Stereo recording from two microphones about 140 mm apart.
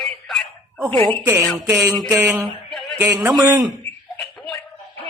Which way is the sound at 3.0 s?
15° right (ahead or behind).